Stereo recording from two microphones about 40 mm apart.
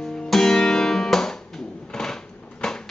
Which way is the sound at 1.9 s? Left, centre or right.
Centre.